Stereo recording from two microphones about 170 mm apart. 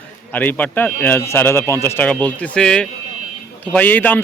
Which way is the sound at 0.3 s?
10° left (ahead or behind).